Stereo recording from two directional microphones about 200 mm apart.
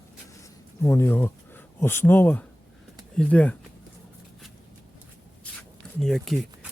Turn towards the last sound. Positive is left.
turn(degrees=0)  # may be behind; listen again after turning